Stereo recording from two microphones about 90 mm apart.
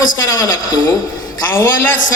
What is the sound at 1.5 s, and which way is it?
Speech, 25° left (ahead or behind).